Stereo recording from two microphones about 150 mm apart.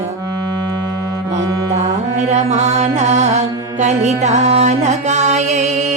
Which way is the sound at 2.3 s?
50° right (ahead or behind).